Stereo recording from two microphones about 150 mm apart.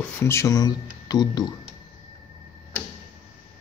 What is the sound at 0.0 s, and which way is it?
Speech, 15° left (ahead or behind).